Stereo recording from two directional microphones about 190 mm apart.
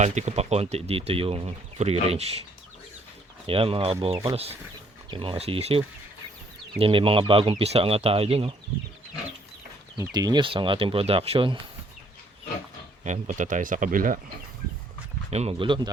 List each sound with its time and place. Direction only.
0.0 s speech: 40° right (ahead or behind)
3.4 s speech: 30° right (ahead or behind)
10.0 s speech: 20° right (ahead or behind)
13.1 s speech: 40° right (ahead or behind)
15.3 s speech: 35° right (ahead or behind)